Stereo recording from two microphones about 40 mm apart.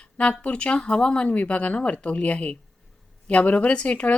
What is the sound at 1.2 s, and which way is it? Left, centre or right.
A woman's voice, left.